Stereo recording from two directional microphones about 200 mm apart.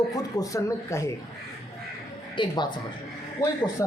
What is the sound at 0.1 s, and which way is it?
Speech, 20° left (ahead or behind).